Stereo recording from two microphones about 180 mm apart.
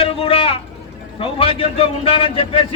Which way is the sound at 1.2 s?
30° left (ahead or behind).